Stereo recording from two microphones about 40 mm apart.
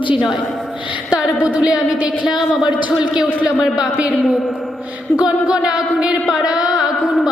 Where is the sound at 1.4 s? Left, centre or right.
Right.